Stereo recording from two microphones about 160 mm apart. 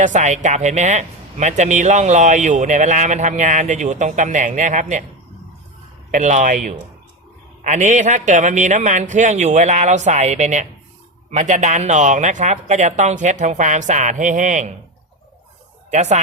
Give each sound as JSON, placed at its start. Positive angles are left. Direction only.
{"t": 0.0, "sound": "speech", "side_deg": -50}
{"t": 6.1, "sound": "speech", "side_deg": -50}
{"t": 15.9, "sound": "speech", "side_deg": -45}